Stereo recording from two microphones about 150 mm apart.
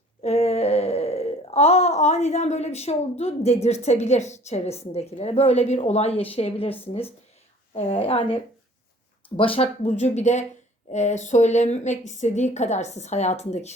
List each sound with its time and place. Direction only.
0.2 s a sound: 45° left (ahead or behind)
7.7 s a woman's voice: 40° left (ahead or behind)
9.4 s a woman's voice: 40° left (ahead or behind)